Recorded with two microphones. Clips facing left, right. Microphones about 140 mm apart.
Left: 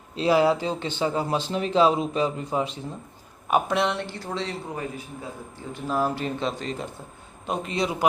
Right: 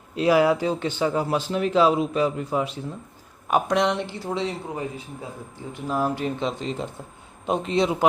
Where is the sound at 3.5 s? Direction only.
5° left (ahead or behind).